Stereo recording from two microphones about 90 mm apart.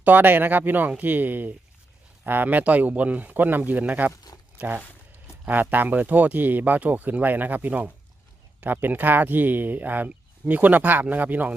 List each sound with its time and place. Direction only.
0.0 s speech: 20° right (ahead or behind)